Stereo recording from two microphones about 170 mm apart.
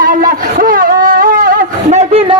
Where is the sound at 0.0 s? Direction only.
55° right (ahead or behind).